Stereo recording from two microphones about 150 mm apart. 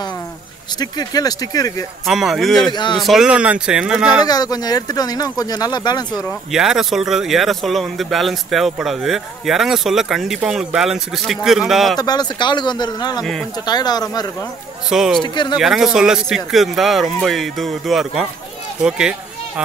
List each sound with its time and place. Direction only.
0.7 s speech: 25° left (ahead or behind)
2.0 s speech: centre (ahead or behind)
2.7 s speech: 30° left (ahead or behind)
3.0 s speech: centre (ahead or behind)
4.2 s speech: 25° left (ahead or behind)
6.5 s speech: 5° right (ahead or behind)
12.0 s speech: 25° left (ahead or behind)
13.2 s speech: centre (ahead or behind)
13.7 s speech: 25° left (ahead or behind)
14.9 s speech: 5° right (ahead or behind)
15.2 s speech: 30° left (ahead or behind)
15.5 s a child's voice: centre (ahead or behind)